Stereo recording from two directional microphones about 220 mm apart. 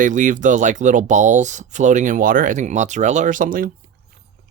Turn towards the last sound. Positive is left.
turn(degrees=-40)  # may be behind; listen again after turning